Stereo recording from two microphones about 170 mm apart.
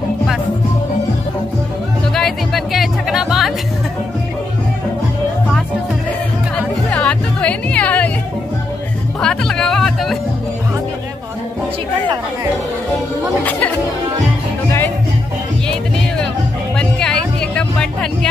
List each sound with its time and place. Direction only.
2.1 s music: centre (ahead or behind)
6.5 s music: 5° left (ahead or behind)
9.2 s music: 5° left (ahead or behind)
13.5 s chatter: 10° left (ahead or behind)
16.7 s music: 5° left (ahead or behind)